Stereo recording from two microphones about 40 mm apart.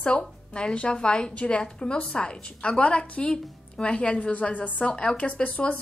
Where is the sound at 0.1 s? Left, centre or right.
Left.